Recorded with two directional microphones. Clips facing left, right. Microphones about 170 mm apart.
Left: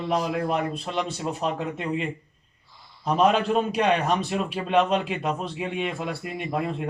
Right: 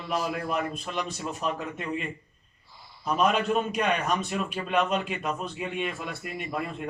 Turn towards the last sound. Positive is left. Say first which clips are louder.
# left 5 dB
turn(degrees=25)  # may be behind; listen again after turning